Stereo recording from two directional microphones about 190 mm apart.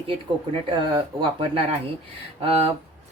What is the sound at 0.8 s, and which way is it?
Speech, 25° right (ahead or behind).